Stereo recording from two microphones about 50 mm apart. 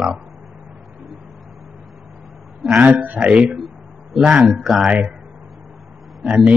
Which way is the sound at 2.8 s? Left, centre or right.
Right.